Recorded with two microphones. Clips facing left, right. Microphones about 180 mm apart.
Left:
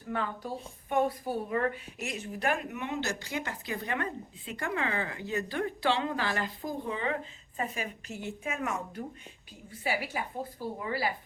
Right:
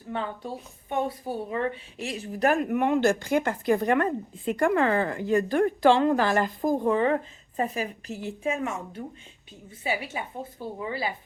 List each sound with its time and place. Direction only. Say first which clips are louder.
0.1 s a woman's voice: right 2 dB; 25° right (ahead or behind)